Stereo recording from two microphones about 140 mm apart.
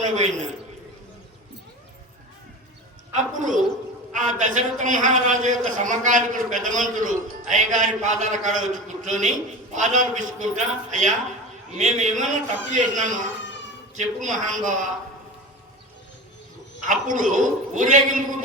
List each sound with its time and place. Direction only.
0.0 s a man's voice: 60° right (ahead or behind)
3.3 s a man's voice: 65° right (ahead or behind)
16.8 s a man's voice: 65° right (ahead or behind)